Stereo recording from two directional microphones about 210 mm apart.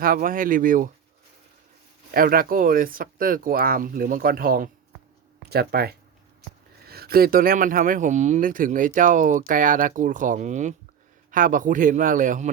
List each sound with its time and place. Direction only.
0.0 s speech: 40° right (ahead or behind)
2.1 s speech: 45° right (ahead or behind)